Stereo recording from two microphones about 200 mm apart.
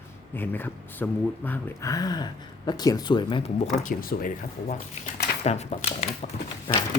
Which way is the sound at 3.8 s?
45° left (ahead or behind).